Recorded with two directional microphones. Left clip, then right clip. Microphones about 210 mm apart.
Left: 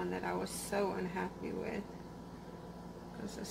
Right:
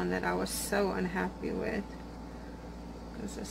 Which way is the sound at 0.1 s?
20° right (ahead or behind).